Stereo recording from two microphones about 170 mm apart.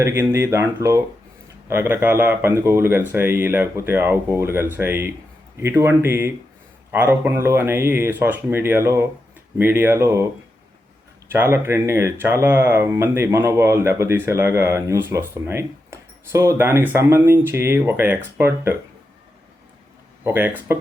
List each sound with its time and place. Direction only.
0.0 s speech: 15° right (ahead or behind)
11.3 s speech: 15° right (ahead or behind)
20.2 s speech: 10° right (ahead or behind)